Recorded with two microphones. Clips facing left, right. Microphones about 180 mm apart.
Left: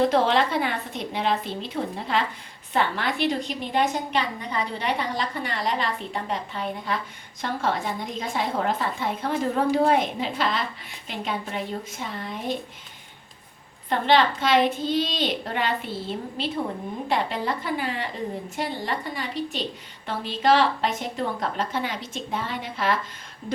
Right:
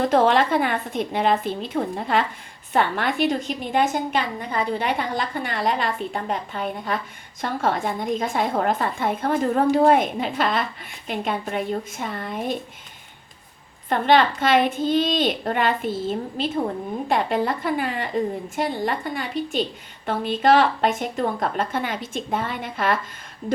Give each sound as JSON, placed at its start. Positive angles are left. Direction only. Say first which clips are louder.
{"t": 0.1, "sound": "a woman's voice", "louder": "right 3 dB", "side_deg": -50}
{"t": 13.9, "sound": "a woman's voice", "louder": "right 2 dB", "side_deg": -50}